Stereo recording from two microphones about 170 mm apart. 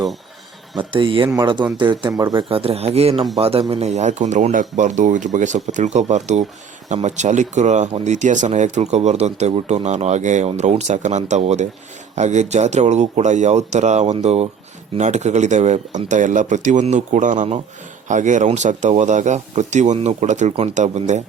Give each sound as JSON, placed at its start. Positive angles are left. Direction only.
{"t": 0.8, "sound": "speech", "side_deg": -30}